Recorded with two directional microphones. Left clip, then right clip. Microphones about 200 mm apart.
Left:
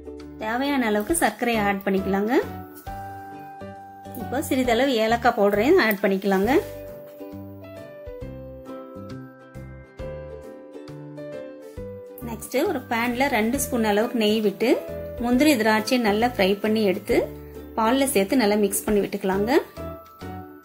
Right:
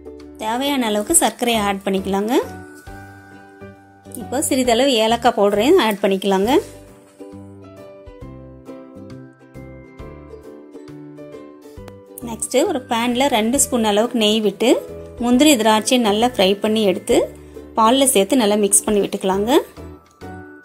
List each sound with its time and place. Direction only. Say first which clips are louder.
0.4 s a woman's voice: right 4 dB; 20° right (ahead or behind)
4.3 s a woman's voice: right 5 dB; 25° right (ahead or behind)
12.3 s a woman's voice: right 6 dB; 35° right (ahead or behind)
15.2 s a woman's voice: right 6 dB; 30° right (ahead or behind)